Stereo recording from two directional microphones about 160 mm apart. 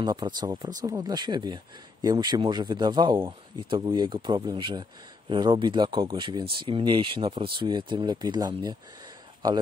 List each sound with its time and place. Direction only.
0.0 s speech: 25° right (ahead or behind)